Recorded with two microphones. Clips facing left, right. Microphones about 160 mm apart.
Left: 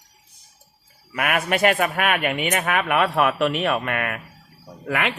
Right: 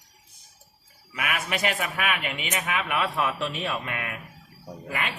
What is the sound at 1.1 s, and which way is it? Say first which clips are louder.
Speech: left 7 dB; 55° left (ahead or behind).